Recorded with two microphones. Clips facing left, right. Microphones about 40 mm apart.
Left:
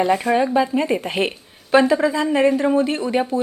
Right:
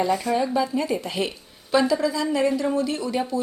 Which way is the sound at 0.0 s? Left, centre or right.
Left.